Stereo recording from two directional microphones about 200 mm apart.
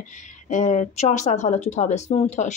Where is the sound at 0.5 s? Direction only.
35° left (ahead or behind).